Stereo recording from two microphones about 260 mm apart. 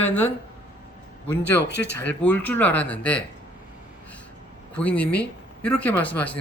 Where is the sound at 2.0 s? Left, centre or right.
Centre.